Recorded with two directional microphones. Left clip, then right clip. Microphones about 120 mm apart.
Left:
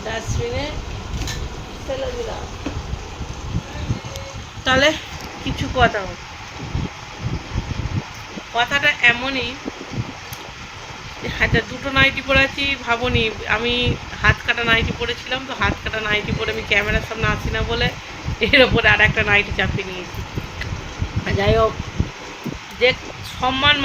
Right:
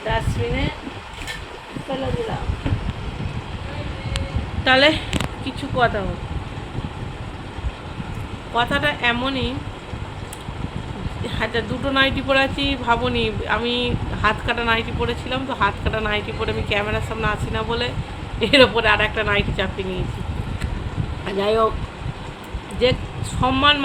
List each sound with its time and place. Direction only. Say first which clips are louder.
4.6 s speech: right 1 dB; centre (ahead or behind)
8.5 s speech: left 2 dB; 15° right (ahead or behind)
11.3 s speech: left 4 dB; 10° right (ahead or behind)
21.2 s speech: left 1 dB; 15° right (ahead or behind)
22.8 s speech: left 2 dB; 15° right (ahead or behind)